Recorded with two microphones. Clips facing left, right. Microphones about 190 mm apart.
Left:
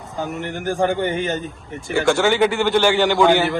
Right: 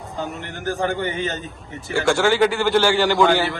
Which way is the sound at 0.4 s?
15° left (ahead or behind).